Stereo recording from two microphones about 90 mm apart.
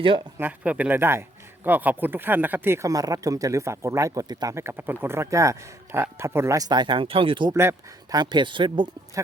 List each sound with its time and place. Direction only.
0.3 s speech: 20° right (ahead or behind)
2.9 s speech: 40° right (ahead or behind)
4.5 s speech: 25° right (ahead or behind)
6.7 s speech: 60° right (ahead or behind)
7.5 s speech: 30° right (ahead or behind)
8.1 s speech: 55° right (ahead or behind)
9.2 s speech: 35° right (ahead or behind)